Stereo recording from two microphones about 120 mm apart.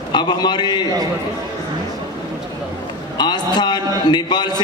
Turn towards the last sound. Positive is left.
turn(degrees=35)  # may be behind; listen again after turning